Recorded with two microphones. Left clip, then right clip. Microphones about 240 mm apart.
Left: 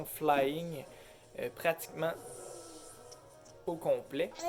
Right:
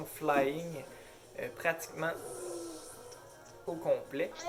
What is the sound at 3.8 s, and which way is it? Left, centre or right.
Speech, left.